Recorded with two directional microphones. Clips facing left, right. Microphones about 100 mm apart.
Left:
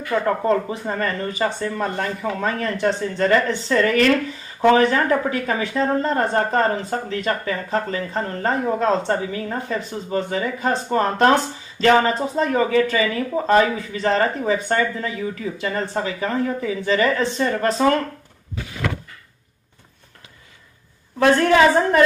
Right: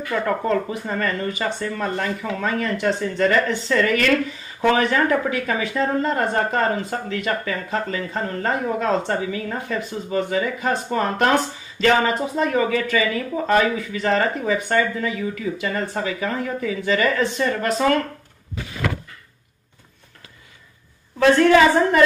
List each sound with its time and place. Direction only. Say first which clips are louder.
0.1 s speech: left 2 dB; 30° left (ahead or behind)